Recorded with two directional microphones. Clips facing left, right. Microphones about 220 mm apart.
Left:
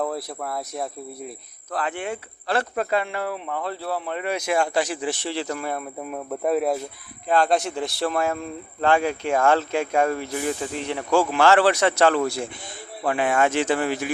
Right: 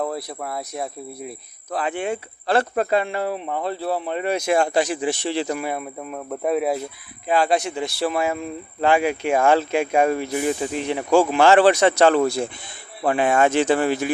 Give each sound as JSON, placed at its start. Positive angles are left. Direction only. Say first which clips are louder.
{"t": 0.0, "sound": "speech", "louder": "right 1 dB", "side_deg": 0}
{"t": 1.7, "sound": "speech", "louder": "right 3 dB", "side_deg": -15}
{"t": 6.0, "sound": "speech", "louder": "even", "side_deg": 5}